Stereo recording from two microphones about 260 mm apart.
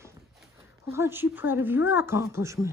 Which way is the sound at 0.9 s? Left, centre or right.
Centre.